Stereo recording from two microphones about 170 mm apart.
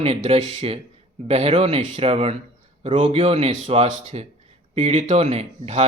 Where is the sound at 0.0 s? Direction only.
35° right (ahead or behind).